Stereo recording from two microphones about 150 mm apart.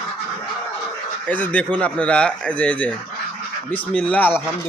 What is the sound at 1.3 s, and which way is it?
Speech, 10° left (ahead or behind).